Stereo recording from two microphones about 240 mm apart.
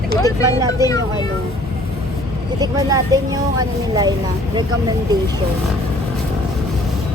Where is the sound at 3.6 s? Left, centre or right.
Centre.